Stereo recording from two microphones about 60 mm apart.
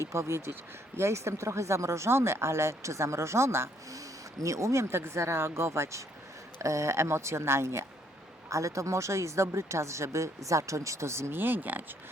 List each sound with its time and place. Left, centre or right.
0.0 s speech: right
3.9 s speech: right
8.4 s a woman's voice: right